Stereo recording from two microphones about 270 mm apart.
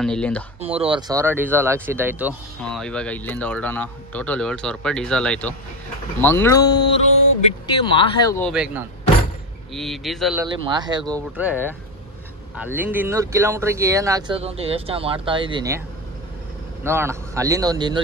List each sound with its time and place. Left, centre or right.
0.0 s speech: centre
0.6 s speech: right
1.0 s speech: centre
7.6 s speech: centre
8.5 s speech: centre
10.4 s speech: centre
12.7 s speech: centre
16.8 s speech: centre